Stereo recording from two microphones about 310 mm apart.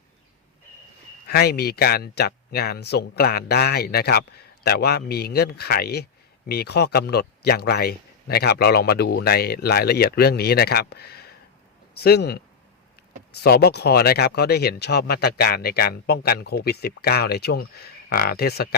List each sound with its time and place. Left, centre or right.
1.3 s speech: left
13.4 s speech: left